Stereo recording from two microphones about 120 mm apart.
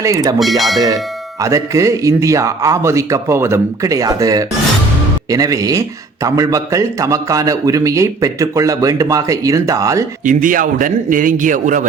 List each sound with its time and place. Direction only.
0.0 s a man's voice: 30° right (ahead or behind)
0.3 s speech: centre (ahead or behind)
1.4 s a man's voice: 25° right (ahead or behind)
10.2 s a man's voice: 90° right